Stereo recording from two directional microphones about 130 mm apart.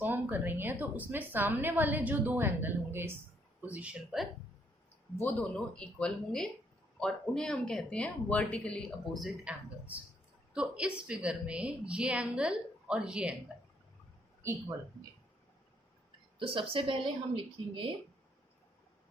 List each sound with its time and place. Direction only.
0.0 s a woman's voice: 15° right (ahead or behind)
5.1 s a woman's voice: 10° left (ahead or behind); by 13.3 s 5° right (ahead or behind)
16.4 s a woman's voice: 45° right (ahead or behind)